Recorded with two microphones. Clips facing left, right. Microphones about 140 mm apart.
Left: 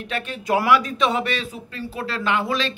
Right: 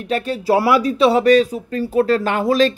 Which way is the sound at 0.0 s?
40° right (ahead or behind).